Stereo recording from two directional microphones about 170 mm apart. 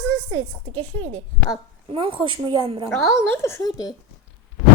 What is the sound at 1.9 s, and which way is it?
A woman's voice, 30° right (ahead or behind).